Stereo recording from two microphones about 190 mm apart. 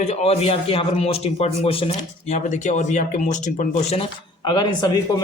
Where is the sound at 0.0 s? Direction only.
35° left (ahead or behind).